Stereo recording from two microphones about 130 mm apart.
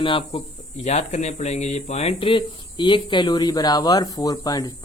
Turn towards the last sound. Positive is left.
turn(degrees=30)  # may be behind; listen again after turning